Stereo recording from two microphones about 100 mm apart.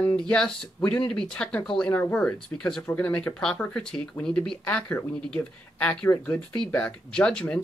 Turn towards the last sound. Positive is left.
turn(degrees=10)  # may be behind; listen again after turning